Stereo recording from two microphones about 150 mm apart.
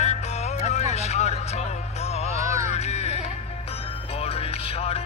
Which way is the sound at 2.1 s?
45° left (ahead or behind).